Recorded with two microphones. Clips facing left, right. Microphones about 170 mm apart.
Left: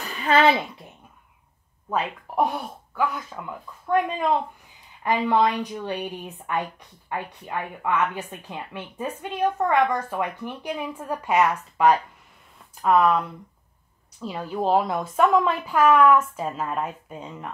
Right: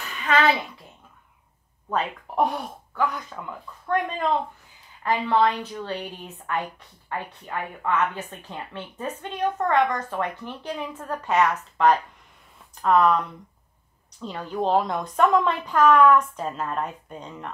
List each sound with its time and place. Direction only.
0.0 s a sound: 30° left (ahead or behind)
1.9 s speech: 5° left (ahead or behind)
14.2 s speech: 5° left (ahead or behind)